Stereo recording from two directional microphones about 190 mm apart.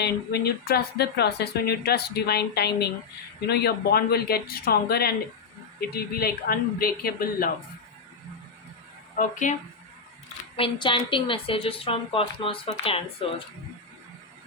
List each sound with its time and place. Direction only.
0.0 s speech: 60° left (ahead or behind)
9.1 s speech: 40° left (ahead or behind)
10.6 s a woman's voice: 25° left (ahead or behind)